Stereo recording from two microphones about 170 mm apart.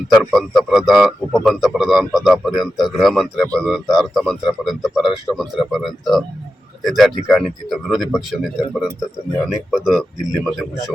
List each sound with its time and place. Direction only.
0.1 s speech: centre (ahead or behind)